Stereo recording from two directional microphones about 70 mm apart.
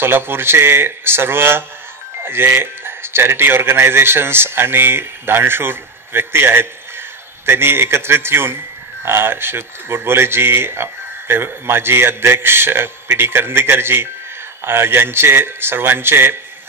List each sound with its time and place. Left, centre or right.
0.0 s speech: right